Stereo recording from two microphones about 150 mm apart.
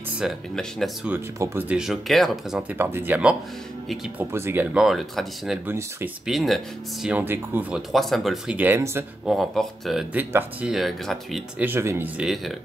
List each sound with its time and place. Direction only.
0.2 s speech: centre (ahead or behind)
1.0 s speech: 15° right (ahead or behind); by 2.6 s centre (ahead or behind)
2.7 s speech: 15° right (ahead or behind)
4.7 s speech: centre (ahead or behind)
5.7 s speech: 15° right (ahead or behind)
6.2 s speech: centre (ahead or behind)
7.9 s speech: centre (ahead or behind); by 9.0 s 15° right (ahead or behind)
9.2 s speech: centre (ahead or behind)
10.1 s speech: 10° right (ahead or behind)
11.6 s speech: 15° right (ahead or behind)
12.2 s speech: 5° right (ahead or behind)